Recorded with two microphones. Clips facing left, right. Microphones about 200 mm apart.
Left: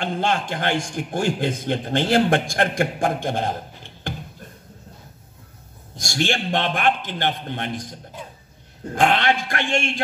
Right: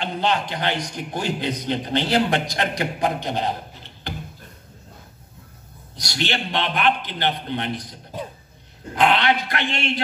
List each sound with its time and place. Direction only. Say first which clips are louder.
0.0 s a man's voice: even; 50° left (ahead or behind)
5.9 s a man's voice: left 3 dB; 45° left (ahead or behind)
8.9 s a man's voice: even; 45° left (ahead or behind)